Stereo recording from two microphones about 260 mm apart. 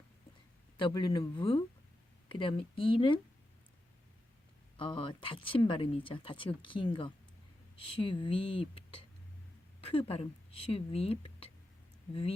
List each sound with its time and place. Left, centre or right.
0.8 s a woman's voice: centre
4.8 s a woman's voice: left